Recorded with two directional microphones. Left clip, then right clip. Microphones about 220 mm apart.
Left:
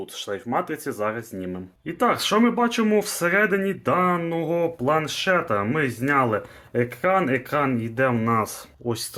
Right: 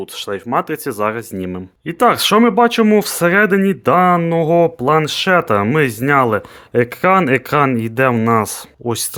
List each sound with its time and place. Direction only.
0.0 s speech: 35° right (ahead or behind)